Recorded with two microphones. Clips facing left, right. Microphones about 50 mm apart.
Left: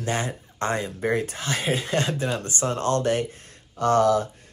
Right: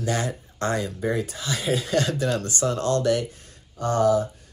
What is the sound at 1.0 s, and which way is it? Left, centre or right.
Speech, left.